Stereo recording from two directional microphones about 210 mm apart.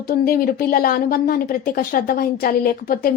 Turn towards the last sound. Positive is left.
turn(degrees=45)  # may be behind; listen again after turning